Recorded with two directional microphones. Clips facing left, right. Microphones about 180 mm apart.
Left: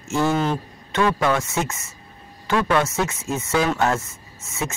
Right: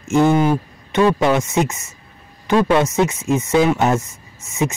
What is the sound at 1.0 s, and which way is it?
Speech, 20° right (ahead or behind).